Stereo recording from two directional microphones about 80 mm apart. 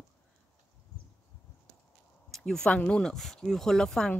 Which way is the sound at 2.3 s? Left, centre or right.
Centre.